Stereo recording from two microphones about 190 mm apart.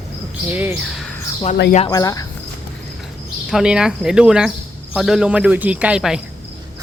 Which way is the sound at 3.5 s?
5° right (ahead or behind).